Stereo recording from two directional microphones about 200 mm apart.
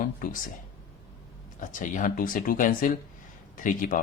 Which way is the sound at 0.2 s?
40° left (ahead or behind).